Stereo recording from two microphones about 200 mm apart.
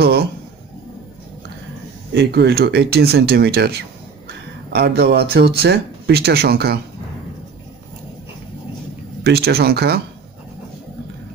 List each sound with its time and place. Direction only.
0.0 s a man's voice: 55° right (ahead or behind)
2.1 s speech: 55° right (ahead or behind)
9.2 s speech: 50° right (ahead or behind)